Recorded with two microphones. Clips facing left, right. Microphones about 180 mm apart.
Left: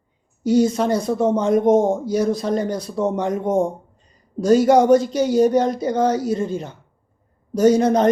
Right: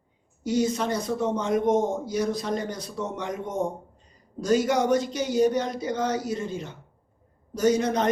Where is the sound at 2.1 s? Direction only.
30° left (ahead or behind).